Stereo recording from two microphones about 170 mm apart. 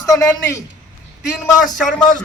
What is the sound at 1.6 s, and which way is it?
Speech, centre (ahead or behind).